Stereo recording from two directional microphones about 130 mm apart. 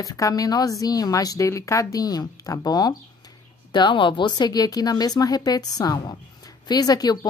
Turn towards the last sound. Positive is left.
turn(degrees=30)  # may be behind; listen again after turning